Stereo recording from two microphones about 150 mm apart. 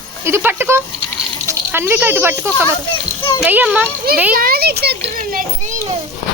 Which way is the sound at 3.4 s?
10° right (ahead or behind).